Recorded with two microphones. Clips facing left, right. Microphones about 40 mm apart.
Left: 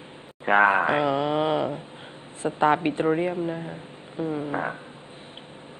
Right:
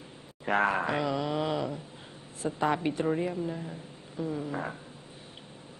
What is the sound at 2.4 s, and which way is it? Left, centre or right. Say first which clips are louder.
Speech: left 7 dB; left.